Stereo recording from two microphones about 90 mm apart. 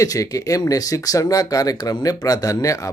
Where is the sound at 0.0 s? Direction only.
40° left (ahead or behind).